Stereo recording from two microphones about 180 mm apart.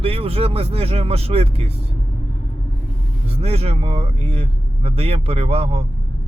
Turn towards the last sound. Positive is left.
turn(degrees=-35)  # may be behind; listen again after turning